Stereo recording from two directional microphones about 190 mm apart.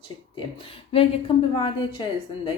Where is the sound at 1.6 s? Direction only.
25° left (ahead or behind).